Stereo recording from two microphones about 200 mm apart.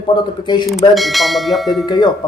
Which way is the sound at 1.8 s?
20° left (ahead or behind).